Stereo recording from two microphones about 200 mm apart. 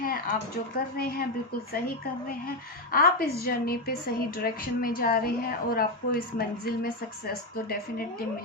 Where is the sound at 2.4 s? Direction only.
45° left (ahead or behind).